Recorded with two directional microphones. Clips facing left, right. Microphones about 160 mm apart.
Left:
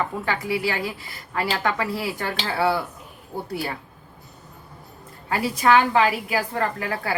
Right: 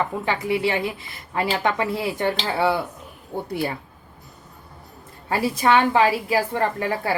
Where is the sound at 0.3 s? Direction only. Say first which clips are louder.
Right 4 dB; 25° right (ahead or behind).